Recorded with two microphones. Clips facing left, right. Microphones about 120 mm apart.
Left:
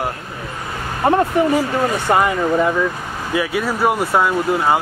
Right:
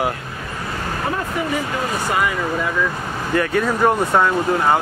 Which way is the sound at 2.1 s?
30° left (ahead or behind).